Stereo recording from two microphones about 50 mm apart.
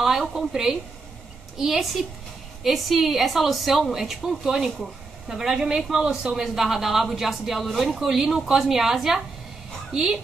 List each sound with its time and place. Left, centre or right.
0.0 s a woman's voice: centre
6.3 s a woman's voice: centre